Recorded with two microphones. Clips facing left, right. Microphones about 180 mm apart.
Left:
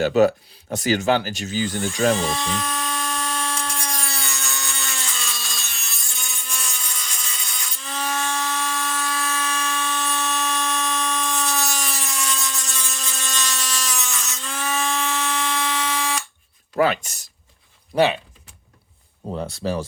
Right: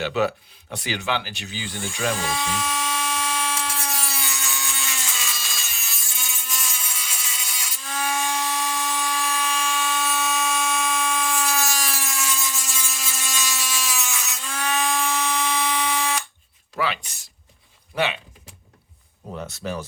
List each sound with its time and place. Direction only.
0.0 s speech: 45° left (ahead or behind)
2.2 s electric toothbrush: 5° right (ahead or behind)
16.7 s a sound: 45° left (ahead or behind)
17.9 s speech: 35° left (ahead or behind)
19.3 s speech: 30° left (ahead or behind)